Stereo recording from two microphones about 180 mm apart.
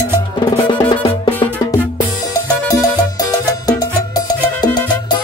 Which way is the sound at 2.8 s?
20° left (ahead or behind).